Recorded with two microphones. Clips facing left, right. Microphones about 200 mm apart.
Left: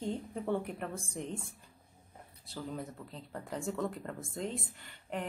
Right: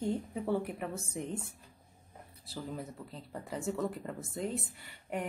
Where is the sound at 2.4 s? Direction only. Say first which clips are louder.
Even; 5° right (ahead or behind).